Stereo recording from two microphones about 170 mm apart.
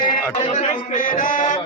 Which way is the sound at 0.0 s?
45° left (ahead or behind).